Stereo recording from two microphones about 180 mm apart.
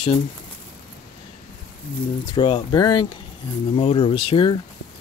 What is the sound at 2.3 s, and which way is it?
Speech, 25° left (ahead or behind).